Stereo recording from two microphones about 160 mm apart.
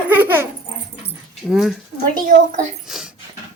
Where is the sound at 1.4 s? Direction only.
5° right (ahead or behind).